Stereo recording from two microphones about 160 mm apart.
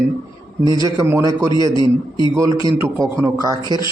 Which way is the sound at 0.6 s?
25° right (ahead or behind).